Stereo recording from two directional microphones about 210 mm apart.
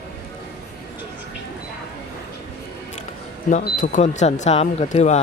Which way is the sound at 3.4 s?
40° left (ahead or behind).